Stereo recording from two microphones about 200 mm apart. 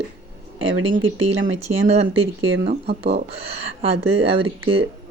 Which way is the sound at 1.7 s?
30° right (ahead or behind).